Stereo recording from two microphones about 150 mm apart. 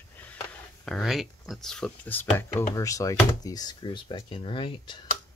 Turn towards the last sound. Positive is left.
turn(degrees=35)  # may be behind; listen again after turning